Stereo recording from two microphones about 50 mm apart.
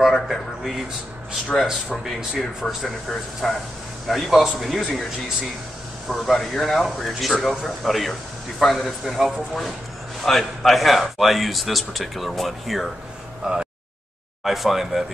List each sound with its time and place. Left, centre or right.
0.0 s speech: centre
2.6 s speech: centre
3.4 s speech: centre
6.0 s speech: centre
13.4 s a sound: centre
14.4 s speech: centre